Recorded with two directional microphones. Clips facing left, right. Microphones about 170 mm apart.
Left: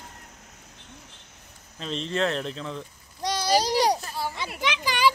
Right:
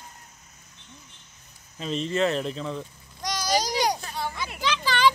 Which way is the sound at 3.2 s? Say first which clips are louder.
Left 3 dB; 30° left (ahead or behind).